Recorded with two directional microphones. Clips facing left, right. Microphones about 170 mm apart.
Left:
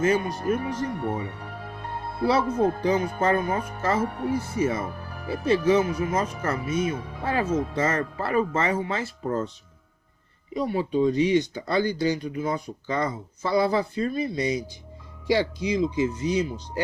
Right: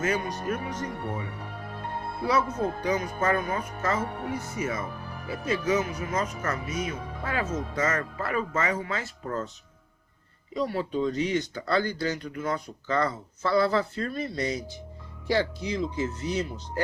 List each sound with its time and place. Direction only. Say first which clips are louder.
0.0 s speech: left 5 dB; 30° left (ahead or behind)
2.2 s speech: left 5 dB; 30° left (ahead or behind)
10.5 s speech: left 3 dB; 15° left (ahead or behind)